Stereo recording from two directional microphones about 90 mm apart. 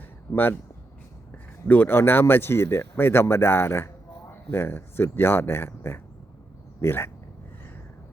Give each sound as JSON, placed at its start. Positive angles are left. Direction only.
{"t": 0.3, "sound": "speech", "side_deg": 20}
{"t": 1.6, "sound": "speech", "side_deg": 20}